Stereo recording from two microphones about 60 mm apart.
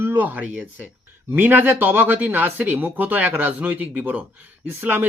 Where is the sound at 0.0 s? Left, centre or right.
Right.